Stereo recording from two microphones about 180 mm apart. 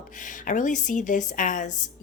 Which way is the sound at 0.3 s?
45° left (ahead or behind).